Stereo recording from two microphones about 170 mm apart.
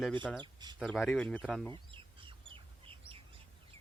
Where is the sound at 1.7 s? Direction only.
30° right (ahead or behind).